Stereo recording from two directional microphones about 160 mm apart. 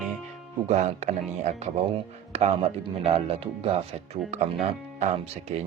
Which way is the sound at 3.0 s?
40° right (ahead or behind).